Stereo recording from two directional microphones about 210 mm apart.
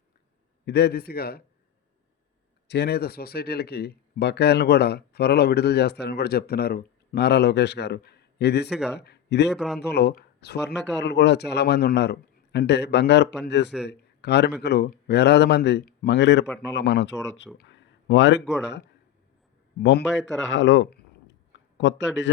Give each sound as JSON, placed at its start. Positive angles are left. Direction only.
{"t": 0.6, "sound": "speech", "side_deg": 50}
{"t": 2.6, "sound": "a man's voice", "side_deg": 50}
{"t": 9.6, "sound": "speech", "side_deg": 0}
{"t": 9.8, "sound": "speech", "side_deg": 50}